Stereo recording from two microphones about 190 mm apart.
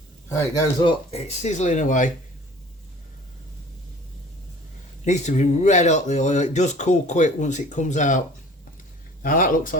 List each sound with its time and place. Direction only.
0.3 s speech: 15° left (ahead or behind)
1.4 s speech: 40° left (ahead or behind)
5.0 s speech: 40° left (ahead or behind)
9.2 s speech: 45° left (ahead or behind)